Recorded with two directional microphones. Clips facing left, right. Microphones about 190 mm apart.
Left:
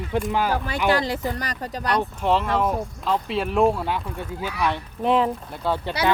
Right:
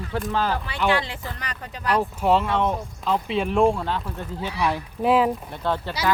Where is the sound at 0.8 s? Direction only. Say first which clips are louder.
Left 2 dB; 40° left (ahead or behind).